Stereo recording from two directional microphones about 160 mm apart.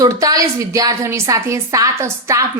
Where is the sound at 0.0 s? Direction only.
20° right (ahead or behind).